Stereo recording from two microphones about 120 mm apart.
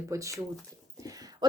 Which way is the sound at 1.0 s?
30° right (ahead or behind).